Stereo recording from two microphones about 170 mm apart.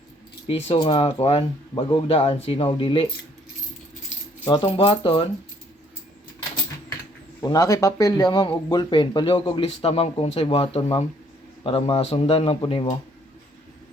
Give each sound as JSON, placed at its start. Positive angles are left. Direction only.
{"t": 0.7, "sound": "speech", "side_deg": 30}
{"t": 4.4, "sound": "speech", "side_deg": 30}
{"t": 7.4, "sound": "speech", "side_deg": 20}